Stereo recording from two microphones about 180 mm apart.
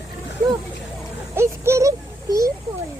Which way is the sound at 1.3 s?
15° right (ahead or behind).